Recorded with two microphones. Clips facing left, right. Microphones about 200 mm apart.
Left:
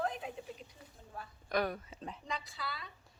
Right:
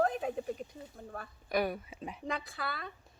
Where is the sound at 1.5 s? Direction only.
10° right (ahead or behind).